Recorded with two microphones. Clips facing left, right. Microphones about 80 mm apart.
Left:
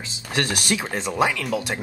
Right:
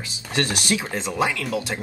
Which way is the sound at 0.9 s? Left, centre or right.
Left.